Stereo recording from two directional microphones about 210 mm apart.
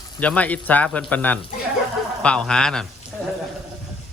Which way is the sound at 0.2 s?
5° left (ahead or behind).